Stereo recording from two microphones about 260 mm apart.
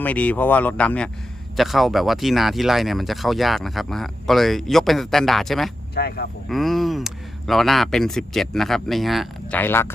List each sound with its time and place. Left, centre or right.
0.0 s speech: centre
5.9 s speech: left
6.5 s speech: centre